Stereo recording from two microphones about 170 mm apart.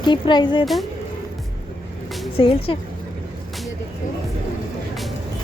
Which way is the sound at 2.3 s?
30° left (ahead or behind).